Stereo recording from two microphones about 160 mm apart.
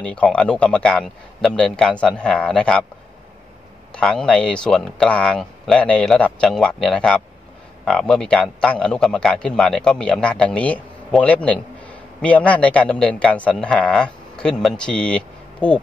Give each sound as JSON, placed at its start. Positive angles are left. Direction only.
{"t": 0.0, "sound": "a man's voice", "side_deg": 5}
{"t": 3.9, "sound": "a man's voice", "side_deg": 5}